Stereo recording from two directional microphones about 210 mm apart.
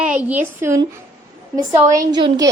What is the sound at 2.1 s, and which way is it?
Speech, 20° right (ahead or behind).